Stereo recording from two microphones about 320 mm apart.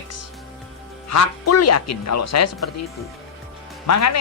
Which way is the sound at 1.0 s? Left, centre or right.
Left.